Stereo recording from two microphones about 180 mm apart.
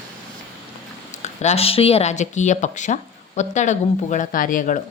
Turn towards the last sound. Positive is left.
turn(degrees=45)  # may be behind; listen again after turning